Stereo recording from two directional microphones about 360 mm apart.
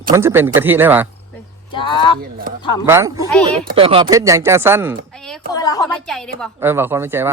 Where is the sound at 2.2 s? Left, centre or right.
Right.